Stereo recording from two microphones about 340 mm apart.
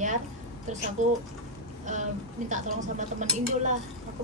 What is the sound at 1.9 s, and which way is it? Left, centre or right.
Speech, right.